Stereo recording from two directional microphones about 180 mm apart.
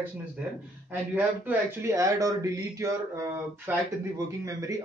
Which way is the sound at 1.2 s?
10° right (ahead or behind).